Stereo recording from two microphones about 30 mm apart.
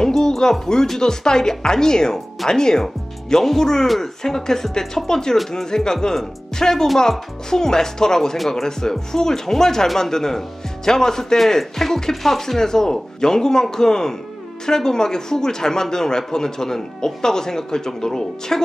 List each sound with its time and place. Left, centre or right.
0.0 s speech: centre